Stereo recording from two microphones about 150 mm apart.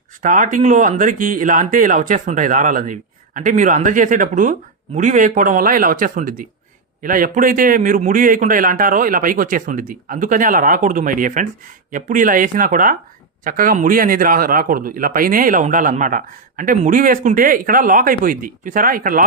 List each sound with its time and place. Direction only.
0.2 s a man's voice: 60° right (ahead or behind)